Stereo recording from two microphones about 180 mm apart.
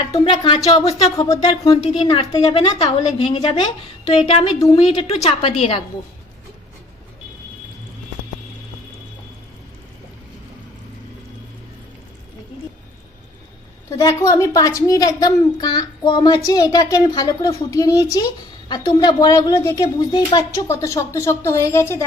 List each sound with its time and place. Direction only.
0.1 s a woman's voice: 30° left (ahead or behind)
0.8 s a woman's voice: 20° left (ahead or behind)
14.0 s a woman's voice: 20° left (ahead or behind)